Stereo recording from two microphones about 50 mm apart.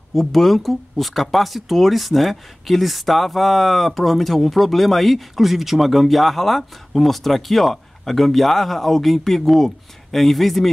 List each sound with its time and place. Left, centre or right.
0.1 s speech: centre